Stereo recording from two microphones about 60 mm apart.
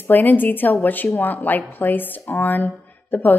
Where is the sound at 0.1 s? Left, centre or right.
Left.